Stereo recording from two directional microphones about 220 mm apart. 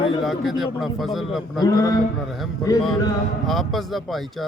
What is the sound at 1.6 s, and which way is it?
Speech, 15° left (ahead or behind).